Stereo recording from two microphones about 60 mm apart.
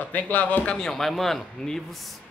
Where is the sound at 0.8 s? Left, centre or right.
Centre.